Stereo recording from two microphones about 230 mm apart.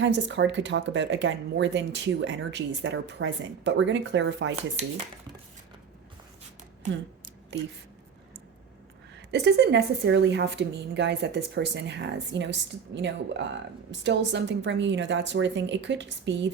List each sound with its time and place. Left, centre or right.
0.0 s speech: right
7.5 s speech: right
9.1 s speech: right